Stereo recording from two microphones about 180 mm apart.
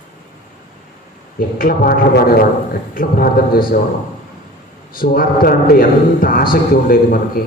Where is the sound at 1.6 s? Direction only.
55° left (ahead or behind).